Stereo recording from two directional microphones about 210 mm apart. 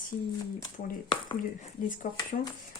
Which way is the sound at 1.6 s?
35° left (ahead or behind).